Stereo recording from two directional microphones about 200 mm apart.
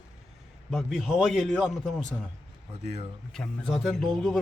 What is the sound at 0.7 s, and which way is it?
A man's voice, centre (ahead or behind).